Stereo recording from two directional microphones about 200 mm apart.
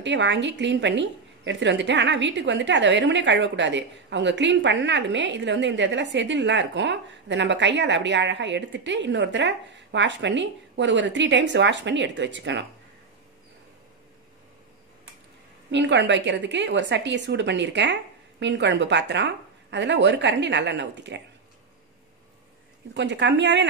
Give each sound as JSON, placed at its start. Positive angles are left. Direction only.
{"t": 0.0, "sound": "a woman's voice", "side_deg": -65}
{"t": 15.7, "sound": "a woman's voice", "side_deg": -60}
{"t": 22.9, "sound": "a woman's voice", "side_deg": -60}